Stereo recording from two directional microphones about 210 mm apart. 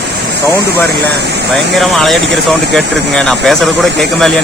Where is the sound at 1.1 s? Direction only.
50° right (ahead or behind).